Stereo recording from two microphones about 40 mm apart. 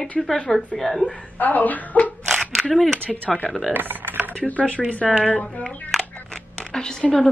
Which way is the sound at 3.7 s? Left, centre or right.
Right.